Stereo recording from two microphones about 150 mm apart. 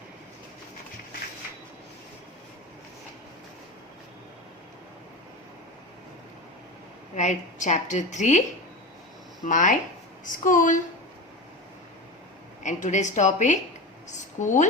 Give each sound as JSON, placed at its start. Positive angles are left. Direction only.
{"t": 7.2, "sound": "a woman's voice", "side_deg": 55}
{"t": 9.4, "sound": "speech", "side_deg": 60}
{"t": 12.6, "sound": "a woman's voice", "side_deg": 55}